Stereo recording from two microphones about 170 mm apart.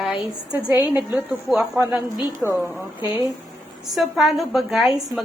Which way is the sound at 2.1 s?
25° left (ahead or behind).